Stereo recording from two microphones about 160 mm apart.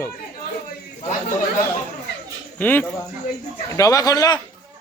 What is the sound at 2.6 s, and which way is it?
Speech, 10° left (ahead or behind).